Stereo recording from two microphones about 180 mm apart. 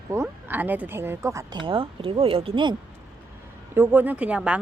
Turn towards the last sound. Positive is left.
turn(degrees=-5)  # may be behind; listen again after turning